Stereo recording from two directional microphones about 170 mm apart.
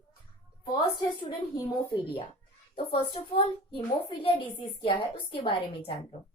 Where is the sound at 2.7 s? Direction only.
30° left (ahead or behind).